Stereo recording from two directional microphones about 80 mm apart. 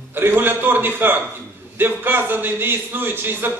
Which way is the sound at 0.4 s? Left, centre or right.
Right.